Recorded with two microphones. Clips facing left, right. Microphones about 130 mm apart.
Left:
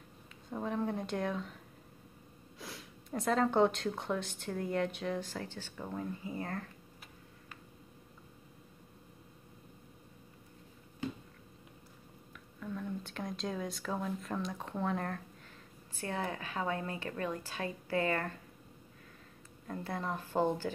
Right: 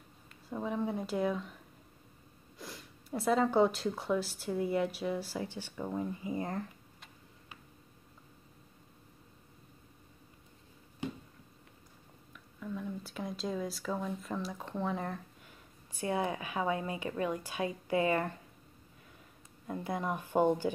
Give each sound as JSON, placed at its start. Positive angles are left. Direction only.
{"t": 0.5, "sound": "a woman's voice", "side_deg": 0}
{"t": 2.6, "sound": "speech", "side_deg": 0}
{"t": 12.5, "sound": "speech", "side_deg": -5}
{"t": 16.0, "sound": "speech", "side_deg": -15}
{"t": 19.7, "sound": "speech", "side_deg": -15}